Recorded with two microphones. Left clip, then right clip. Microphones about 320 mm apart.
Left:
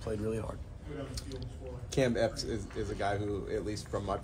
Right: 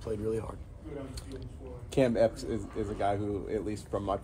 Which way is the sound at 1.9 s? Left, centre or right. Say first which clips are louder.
Right 4 dB; right.